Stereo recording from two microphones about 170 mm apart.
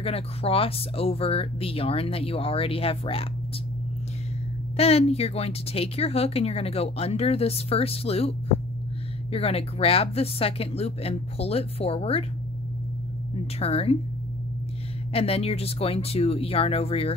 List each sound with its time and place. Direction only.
0.0 s speech: 35° left (ahead or behind)
4.7 s speech: 35° left (ahead or behind)
13.6 s speech: 35° left (ahead or behind)
15.1 s speech: 35° left (ahead or behind)